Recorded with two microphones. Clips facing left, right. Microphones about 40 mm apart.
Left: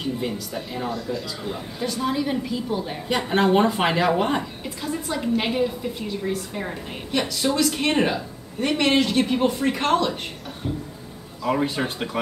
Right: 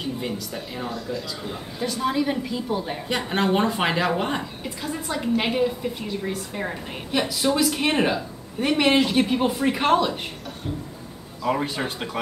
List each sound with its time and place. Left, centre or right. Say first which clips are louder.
0.0 s a man's voice: left 2 dB; centre
11.4 s a man's voice: left 1 dB; centre